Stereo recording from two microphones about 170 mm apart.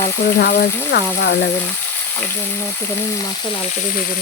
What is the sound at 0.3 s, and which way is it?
Speech, 65° left (ahead or behind).